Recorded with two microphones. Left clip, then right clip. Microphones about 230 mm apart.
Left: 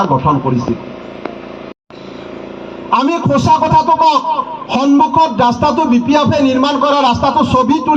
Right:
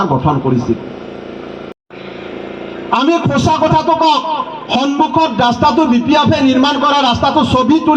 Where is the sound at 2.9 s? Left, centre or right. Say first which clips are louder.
Even; right.